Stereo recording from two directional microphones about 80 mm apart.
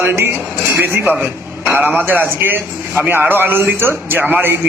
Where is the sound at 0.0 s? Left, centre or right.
Right.